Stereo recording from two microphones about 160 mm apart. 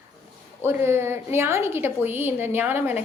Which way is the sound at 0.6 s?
15° right (ahead or behind).